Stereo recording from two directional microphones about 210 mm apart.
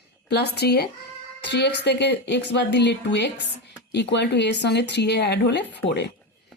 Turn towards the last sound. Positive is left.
turn(degrees=55)  # may be behind; listen again after turning